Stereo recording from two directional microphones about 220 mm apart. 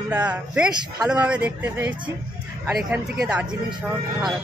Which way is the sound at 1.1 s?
5° right (ahead or behind).